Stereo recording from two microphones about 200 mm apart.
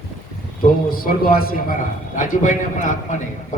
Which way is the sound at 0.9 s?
45° left (ahead or behind).